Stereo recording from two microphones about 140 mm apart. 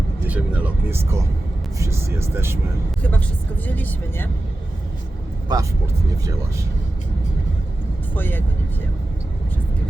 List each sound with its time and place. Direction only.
0.3 s speech: 10° right (ahead or behind)
3.0 s speech: 10° left (ahead or behind)
5.5 s speech: 30° right (ahead or behind)
8.1 s speech: 15° left (ahead or behind)